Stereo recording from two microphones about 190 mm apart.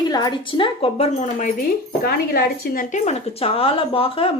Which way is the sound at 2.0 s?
50° left (ahead or behind).